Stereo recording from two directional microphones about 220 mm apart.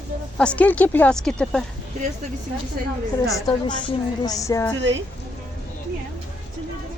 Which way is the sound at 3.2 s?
15° left (ahead or behind).